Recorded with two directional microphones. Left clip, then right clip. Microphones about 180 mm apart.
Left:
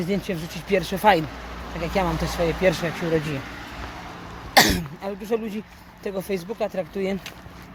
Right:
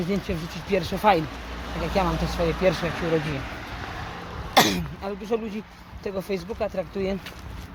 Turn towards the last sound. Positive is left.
turn(degrees=20)  # may be behind; listen again after turning